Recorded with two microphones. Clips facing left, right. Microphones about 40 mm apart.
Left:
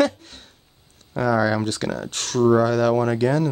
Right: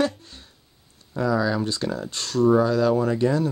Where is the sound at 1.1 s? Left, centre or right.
Left.